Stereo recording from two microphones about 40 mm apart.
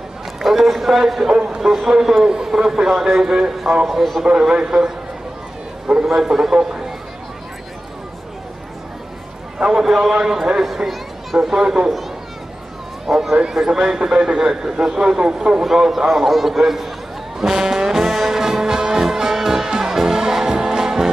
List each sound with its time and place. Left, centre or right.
0.4 s a man's voice: centre
1.3 s a man's voice: right
3.8 s speech: centre
4.2 s a man's voice: centre
6.0 s a man's voice: centre
9.8 s a man's voice: centre
11.6 s a man's voice: right
13.0 s a man's voice: centre
15.6 s a man's voice: centre
17.4 s trombone: centre